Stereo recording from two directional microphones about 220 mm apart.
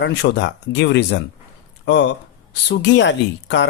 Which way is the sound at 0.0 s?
50° left (ahead or behind).